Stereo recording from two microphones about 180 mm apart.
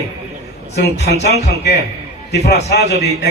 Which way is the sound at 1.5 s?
65° left (ahead or behind).